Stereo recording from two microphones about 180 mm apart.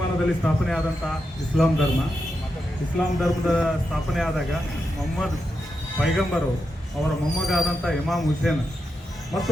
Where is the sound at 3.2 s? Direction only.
Centre (ahead or behind).